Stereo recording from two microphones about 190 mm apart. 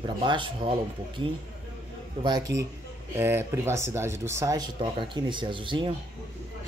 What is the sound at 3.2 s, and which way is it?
Speech, 10° right (ahead or behind).